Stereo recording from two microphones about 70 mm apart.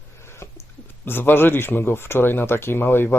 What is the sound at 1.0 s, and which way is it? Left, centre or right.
Speech, left.